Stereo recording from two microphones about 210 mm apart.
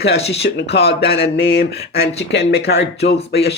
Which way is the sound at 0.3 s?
55° left (ahead or behind).